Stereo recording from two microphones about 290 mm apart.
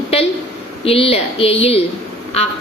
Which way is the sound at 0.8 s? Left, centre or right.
Centre.